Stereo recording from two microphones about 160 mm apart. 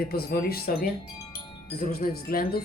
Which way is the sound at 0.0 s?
70° left (ahead or behind).